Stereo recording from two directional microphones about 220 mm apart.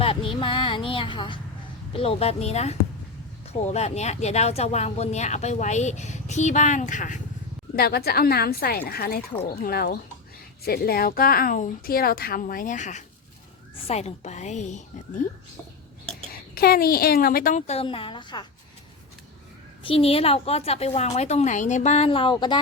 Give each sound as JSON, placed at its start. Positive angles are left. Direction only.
{"t": 0.0, "sound": "a woman's voice", "side_deg": 25}
{"t": 16.6, "sound": "speech", "side_deg": 45}
{"t": 19.8, "sound": "a woman's voice", "side_deg": 25}